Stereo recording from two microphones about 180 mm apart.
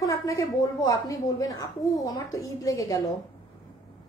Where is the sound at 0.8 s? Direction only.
20° left (ahead or behind).